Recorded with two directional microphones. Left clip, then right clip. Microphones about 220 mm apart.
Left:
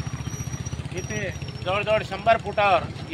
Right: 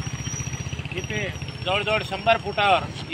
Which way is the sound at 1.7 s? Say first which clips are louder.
Even; 10° left (ahead or behind).